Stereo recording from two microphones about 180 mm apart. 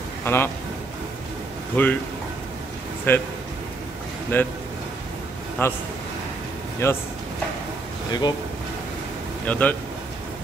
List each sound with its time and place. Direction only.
0.2 s a man's voice: 10° left (ahead or behind)
1.8 s speech: 10° left (ahead or behind)
3.1 s speech: 10° left (ahead or behind)
4.3 s speech: 10° left (ahead or behind)
5.6 s speech: 10° left (ahead or behind)
6.8 s speech: 15° left (ahead or behind)
8.1 s speech: 25° left (ahead or behind)
9.5 s speech: 10° left (ahead or behind)